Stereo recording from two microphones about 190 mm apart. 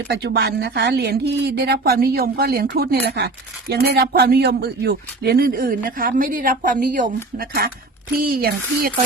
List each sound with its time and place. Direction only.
0.1 s a woman's voice: 65° right (ahead or behind)